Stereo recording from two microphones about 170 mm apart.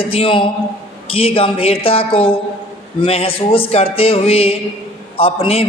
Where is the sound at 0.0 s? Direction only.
35° left (ahead or behind).